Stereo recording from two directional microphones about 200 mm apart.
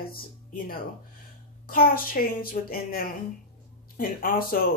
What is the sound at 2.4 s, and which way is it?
Speech, 50° left (ahead or behind).